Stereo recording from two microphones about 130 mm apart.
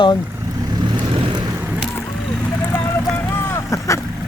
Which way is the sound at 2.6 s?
15° left (ahead or behind).